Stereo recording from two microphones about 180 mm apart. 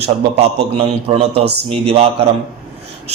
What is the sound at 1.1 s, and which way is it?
Speech, 35° right (ahead or behind).